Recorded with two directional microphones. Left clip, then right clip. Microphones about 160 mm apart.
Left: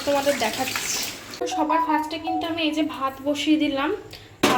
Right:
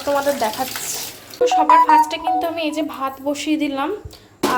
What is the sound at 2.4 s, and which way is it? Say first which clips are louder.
A woman's voice: right 3 dB; 25° right (ahead or behind).